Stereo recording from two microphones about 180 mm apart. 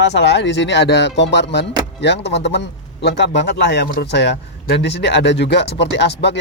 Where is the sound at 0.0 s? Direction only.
70° left (ahead or behind).